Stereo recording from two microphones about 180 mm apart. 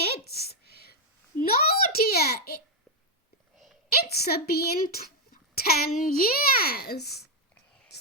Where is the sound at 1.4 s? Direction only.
55° left (ahead or behind).